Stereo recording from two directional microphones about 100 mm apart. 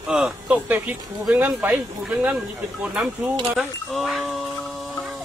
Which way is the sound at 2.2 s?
10° right (ahead or behind).